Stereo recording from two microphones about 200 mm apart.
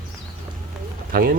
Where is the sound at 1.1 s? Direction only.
45° right (ahead or behind).